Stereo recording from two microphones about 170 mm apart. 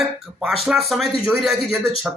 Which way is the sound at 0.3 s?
Centre (ahead or behind).